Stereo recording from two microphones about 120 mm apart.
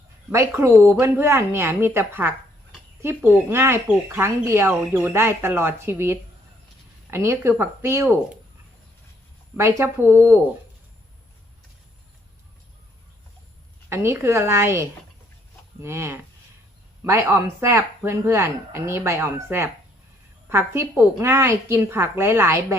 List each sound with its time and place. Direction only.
0.3 s speech: 20° right (ahead or behind)
9.6 s speech: 20° right (ahead or behind)
13.9 s speech: 20° right (ahead or behind)